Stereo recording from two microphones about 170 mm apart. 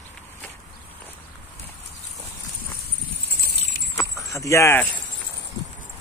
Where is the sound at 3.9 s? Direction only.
20° left (ahead or behind).